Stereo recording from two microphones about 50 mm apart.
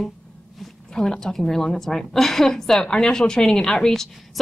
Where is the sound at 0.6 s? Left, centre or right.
Centre.